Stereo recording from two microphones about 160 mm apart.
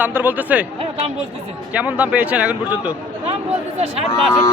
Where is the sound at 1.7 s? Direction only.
5° right (ahead or behind).